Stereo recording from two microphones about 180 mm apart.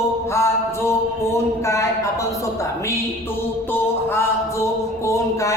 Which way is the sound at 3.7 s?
15° left (ahead or behind).